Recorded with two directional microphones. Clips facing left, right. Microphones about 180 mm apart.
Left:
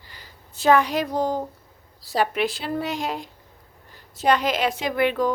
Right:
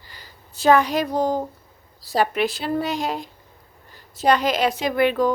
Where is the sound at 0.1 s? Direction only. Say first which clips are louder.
Right 1 dB; 35° right (ahead or behind).